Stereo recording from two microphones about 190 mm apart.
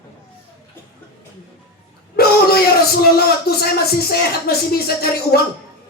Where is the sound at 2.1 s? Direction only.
55° left (ahead or behind).